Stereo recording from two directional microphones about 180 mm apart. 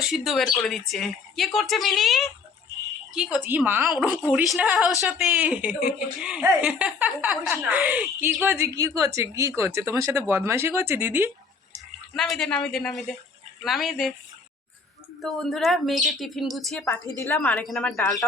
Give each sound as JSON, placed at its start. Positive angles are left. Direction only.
{"t": 0.0, "sound": "a woman's voice", "side_deg": 0}
{"t": 12.1, "sound": "speech", "side_deg": 0}
{"t": 15.2, "sound": "speech", "side_deg": 0}
{"t": 17.2, "sound": "a woman's voice", "side_deg": 10}